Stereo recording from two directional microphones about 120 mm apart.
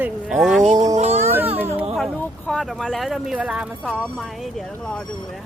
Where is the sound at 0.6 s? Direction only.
75° right (ahead or behind).